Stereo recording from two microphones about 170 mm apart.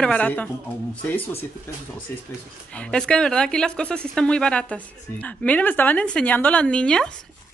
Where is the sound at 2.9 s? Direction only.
5° left (ahead or behind).